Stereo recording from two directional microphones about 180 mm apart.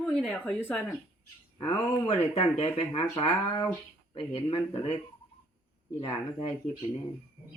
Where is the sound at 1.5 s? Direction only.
25° left (ahead or behind).